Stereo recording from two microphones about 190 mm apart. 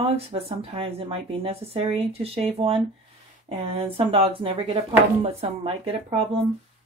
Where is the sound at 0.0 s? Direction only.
30° right (ahead or behind).